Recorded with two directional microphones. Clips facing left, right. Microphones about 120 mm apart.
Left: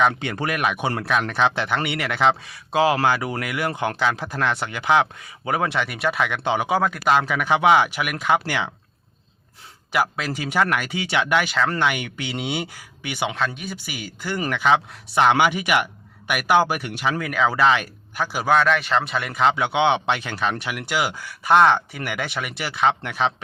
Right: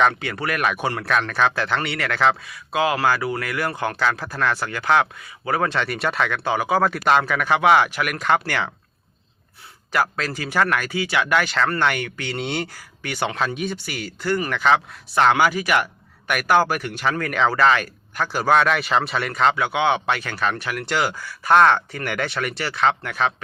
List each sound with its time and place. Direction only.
0.2 s speech: 25° left (ahead or behind)
2.4 s speech: 30° left (ahead or behind)
6.8 s speech: centre (ahead or behind)
7.3 s speech: 15° left (ahead or behind)
9.9 s speech: 10° left (ahead or behind)
13.3 s speech: centre (ahead or behind)
13.7 s speech: 10° left (ahead or behind)
18.4 s speech: centre (ahead or behind)
19.5 s speech: 20° left (ahead or behind)